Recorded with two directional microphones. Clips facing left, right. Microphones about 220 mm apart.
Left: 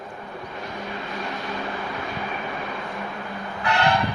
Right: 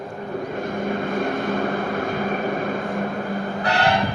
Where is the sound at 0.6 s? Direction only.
50° right (ahead or behind).